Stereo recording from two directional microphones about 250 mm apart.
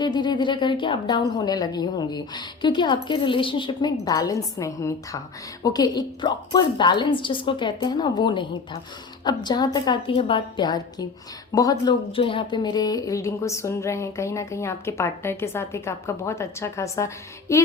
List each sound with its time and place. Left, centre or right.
0.0 s speech: centre